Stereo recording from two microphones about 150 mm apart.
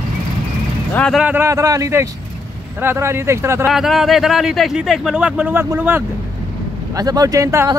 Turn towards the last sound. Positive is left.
turn(degrees=-20)  # may be behind; listen again after turning